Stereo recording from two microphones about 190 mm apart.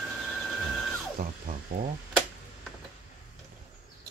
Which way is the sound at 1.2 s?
50° right (ahead or behind).